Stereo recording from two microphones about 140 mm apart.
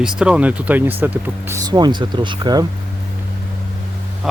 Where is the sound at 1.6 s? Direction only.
30° right (ahead or behind).